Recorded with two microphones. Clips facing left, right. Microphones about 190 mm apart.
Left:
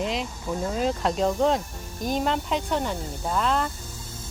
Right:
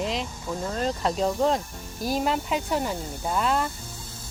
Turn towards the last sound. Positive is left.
turn(degrees=-5)  # may be behind; listen again after turning